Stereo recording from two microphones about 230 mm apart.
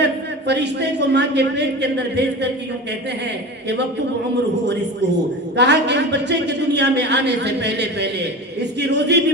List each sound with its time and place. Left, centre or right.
0.0 s a man's voice: right
5.5 s a man's voice: right